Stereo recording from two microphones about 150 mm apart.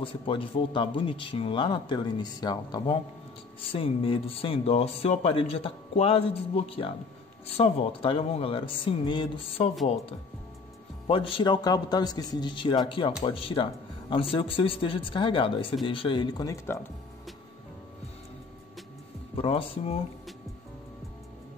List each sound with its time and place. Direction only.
0.0 s a man's voice: 35° left (ahead or behind)
11.1 s a man's voice: 35° left (ahead or behind)
19.3 s a man's voice: 40° left (ahead or behind)